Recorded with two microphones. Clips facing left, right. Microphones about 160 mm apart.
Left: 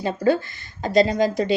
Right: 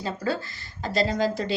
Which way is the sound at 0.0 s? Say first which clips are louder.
Left 8 dB; 20° left (ahead or behind).